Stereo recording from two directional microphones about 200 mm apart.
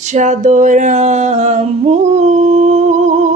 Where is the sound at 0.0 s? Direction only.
35° right (ahead or behind).